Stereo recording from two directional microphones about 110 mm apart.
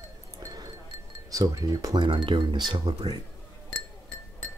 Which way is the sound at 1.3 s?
35° right (ahead or behind).